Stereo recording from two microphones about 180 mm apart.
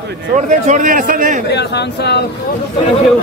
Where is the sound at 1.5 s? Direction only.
70° left (ahead or behind).